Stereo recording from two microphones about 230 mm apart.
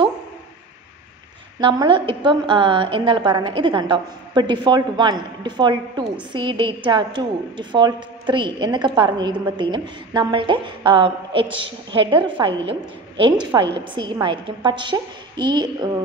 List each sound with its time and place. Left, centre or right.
1.6 s a woman's voice: right